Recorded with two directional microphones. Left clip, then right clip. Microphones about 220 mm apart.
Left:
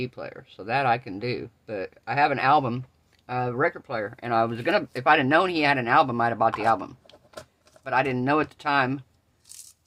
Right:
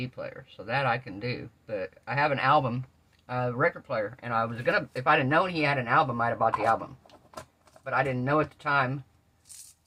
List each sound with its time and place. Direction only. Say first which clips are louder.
0.0 s speech: left 3 dB; 50° left (ahead or behind)
7.9 s speech: left 4 dB; 55° left (ahead or behind)